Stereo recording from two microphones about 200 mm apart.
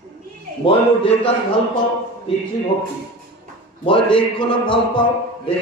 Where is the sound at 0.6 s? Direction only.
25° left (ahead or behind).